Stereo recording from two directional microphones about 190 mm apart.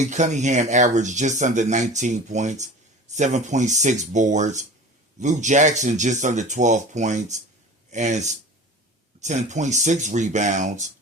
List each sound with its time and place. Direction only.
0.0 s speech: 40° right (ahead or behind)